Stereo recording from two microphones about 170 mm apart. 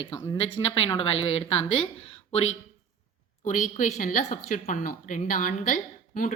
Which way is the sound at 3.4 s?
50° left (ahead or behind).